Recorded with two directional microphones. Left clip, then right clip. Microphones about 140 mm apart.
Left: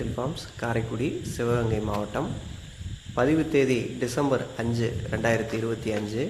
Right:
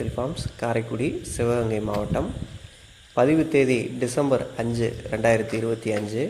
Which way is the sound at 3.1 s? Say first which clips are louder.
Right 3 dB; 20° right (ahead or behind).